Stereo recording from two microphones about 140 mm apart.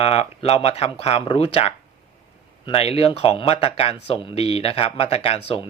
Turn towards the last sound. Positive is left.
turn(degrees=45)  # may be behind; listen again after turning